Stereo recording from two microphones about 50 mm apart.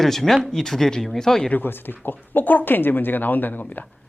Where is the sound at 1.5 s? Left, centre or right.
Left.